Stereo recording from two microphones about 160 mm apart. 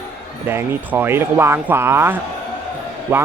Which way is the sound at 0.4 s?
15° right (ahead or behind).